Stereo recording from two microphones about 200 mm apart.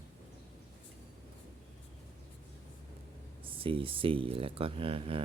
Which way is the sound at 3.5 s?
25° right (ahead or behind).